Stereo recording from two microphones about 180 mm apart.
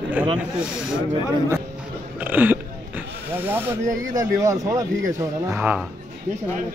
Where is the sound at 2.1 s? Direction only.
10° right (ahead or behind).